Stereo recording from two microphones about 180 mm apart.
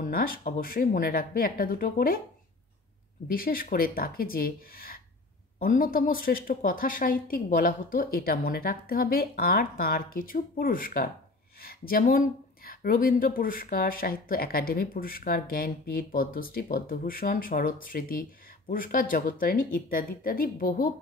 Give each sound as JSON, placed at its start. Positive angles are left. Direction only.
{"t": 0.0, "sound": "speech", "side_deg": 55}
{"t": 3.3, "sound": "speech", "side_deg": 55}